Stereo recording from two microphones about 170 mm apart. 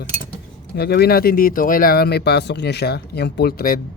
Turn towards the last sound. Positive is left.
turn(degrees=60)  # may be behind; listen again after turning